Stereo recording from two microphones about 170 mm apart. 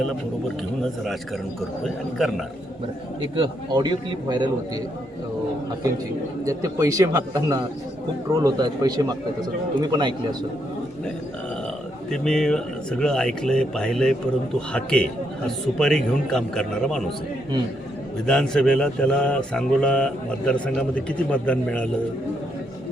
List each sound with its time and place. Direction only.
3.3 s a man's voice: 25° right (ahead or behind)
6.4 s a man's voice: 20° right (ahead or behind)
12.1 s a man's voice: 5° left (ahead or behind)
18.3 s speech: 5° left (ahead or behind)